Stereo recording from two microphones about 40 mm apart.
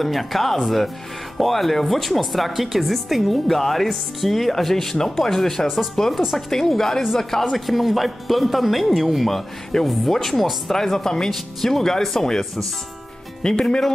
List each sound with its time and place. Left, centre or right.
0.0 s speech: centre
7.5 s speech: centre
13.4 s speech: left